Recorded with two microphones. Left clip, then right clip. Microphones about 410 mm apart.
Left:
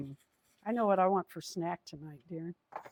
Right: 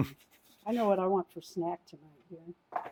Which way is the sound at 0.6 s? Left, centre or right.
Left.